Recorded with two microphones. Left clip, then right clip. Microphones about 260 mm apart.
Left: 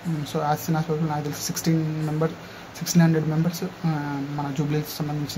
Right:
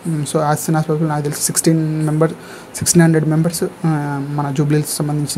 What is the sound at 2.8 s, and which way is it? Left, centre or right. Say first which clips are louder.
Speech: right 9 dB; right.